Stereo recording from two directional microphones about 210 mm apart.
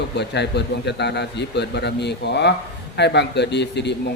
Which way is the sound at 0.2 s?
55° left (ahead or behind).